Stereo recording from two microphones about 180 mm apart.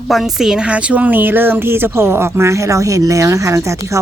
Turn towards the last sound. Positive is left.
turn(degrees=-15)  # may be behind; listen again after turning